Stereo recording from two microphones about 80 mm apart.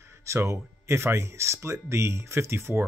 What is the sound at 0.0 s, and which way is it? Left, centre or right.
Speech, right.